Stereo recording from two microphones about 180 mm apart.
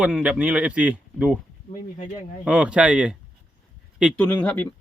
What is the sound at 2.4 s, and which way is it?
Speech, 5° right (ahead or behind).